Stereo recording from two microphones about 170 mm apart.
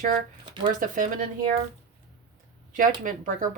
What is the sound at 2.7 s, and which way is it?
Speech, 50° right (ahead or behind).